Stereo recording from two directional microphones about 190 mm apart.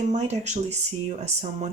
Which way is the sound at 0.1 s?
35° right (ahead or behind).